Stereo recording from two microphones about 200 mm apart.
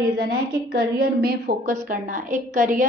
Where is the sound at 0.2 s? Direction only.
50° right (ahead or behind).